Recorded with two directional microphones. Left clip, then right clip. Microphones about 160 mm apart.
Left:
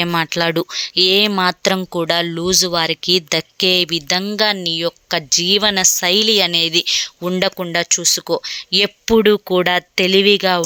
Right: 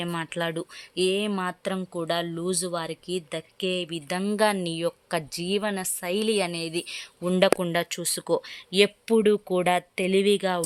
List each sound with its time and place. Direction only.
0.0 s speech: 25° left (ahead or behind)
0.8 s speech: 15° left (ahead or behind)
4.3 s speech: centre (ahead or behind)